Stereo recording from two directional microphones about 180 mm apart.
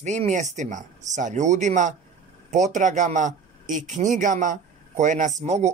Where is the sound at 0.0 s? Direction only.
40° right (ahead or behind).